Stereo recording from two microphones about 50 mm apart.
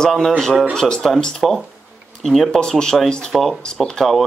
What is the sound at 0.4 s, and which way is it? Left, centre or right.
Speech, centre.